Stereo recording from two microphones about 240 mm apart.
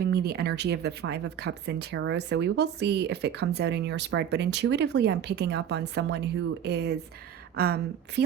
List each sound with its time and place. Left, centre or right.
0.0 s speech: right